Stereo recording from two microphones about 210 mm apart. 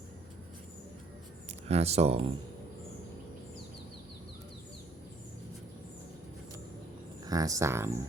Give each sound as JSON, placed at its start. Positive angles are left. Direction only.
{"t": 1.6, "sound": "speech", "side_deg": -30}
{"t": 7.3, "sound": "speech", "side_deg": -15}